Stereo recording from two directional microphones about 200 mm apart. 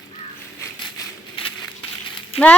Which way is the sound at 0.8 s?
25° left (ahead or behind).